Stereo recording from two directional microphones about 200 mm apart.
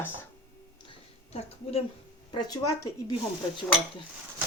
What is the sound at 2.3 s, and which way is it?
Speech, 20° left (ahead or behind).